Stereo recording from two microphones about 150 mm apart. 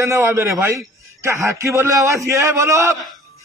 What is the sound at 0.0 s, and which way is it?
A man's voice, 15° right (ahead or behind).